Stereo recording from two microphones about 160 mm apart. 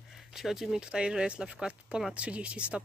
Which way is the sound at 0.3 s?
Centre (ahead or behind).